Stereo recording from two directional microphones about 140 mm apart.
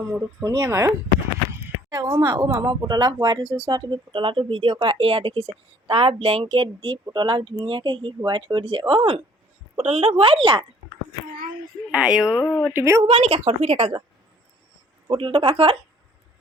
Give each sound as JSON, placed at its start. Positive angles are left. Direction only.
{"t": 0.4, "sound": "speech", "side_deg": -25}
{"t": 11.9, "sound": "speech", "side_deg": -5}
{"t": 12.3, "sound": "speech", "side_deg": 15}
{"t": 12.7, "sound": "speech", "side_deg": -20}
{"t": 13.0, "sound": "speech", "side_deg": -45}
{"t": 15.0, "sound": "speech", "side_deg": -35}